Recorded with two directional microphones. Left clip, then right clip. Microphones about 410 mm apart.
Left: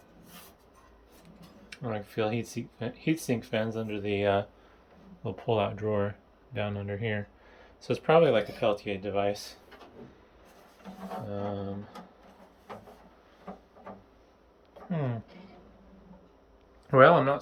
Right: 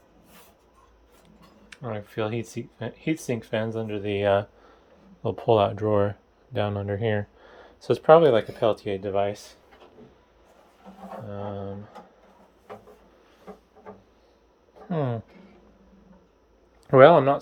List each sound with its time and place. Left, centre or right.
1.7 s speech: centre
11.3 s speech: centre
14.8 s speech: centre
16.8 s speech: centre